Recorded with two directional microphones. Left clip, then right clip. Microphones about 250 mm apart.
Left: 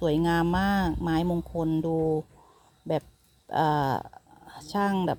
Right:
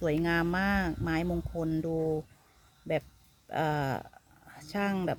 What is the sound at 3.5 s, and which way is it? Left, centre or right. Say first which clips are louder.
Speech: left 6 dB; centre.